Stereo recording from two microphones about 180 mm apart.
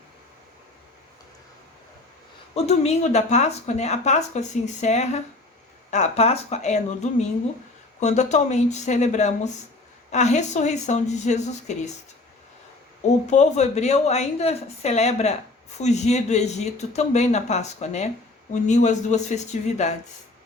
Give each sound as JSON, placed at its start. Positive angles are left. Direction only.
{"t": 2.6, "sound": "speech", "side_deg": 35}
{"t": 13.0, "sound": "speech", "side_deg": 40}